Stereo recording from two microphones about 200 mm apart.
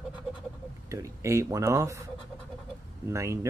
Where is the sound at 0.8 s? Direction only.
15° right (ahead or behind).